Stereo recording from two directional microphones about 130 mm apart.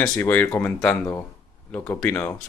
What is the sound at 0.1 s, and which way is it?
Speech, 15° left (ahead or behind).